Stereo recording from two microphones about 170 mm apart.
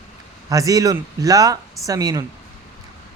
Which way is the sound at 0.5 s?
20° right (ahead or behind).